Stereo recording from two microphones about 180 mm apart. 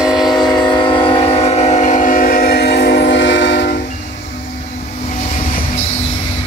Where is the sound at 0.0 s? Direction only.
Centre (ahead or behind).